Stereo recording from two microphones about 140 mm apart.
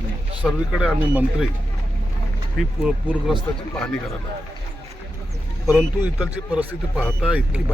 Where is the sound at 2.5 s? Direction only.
5° right (ahead or behind).